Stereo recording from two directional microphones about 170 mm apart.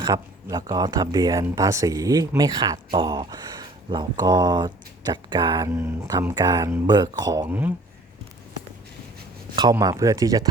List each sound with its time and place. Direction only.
0.0 s speech: 25° right (ahead or behind)
7.4 s speech: 10° right (ahead or behind)
9.6 s speech: 25° right (ahead or behind)